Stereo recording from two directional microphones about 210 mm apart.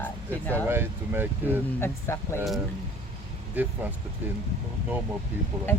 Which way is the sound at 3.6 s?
10° right (ahead or behind).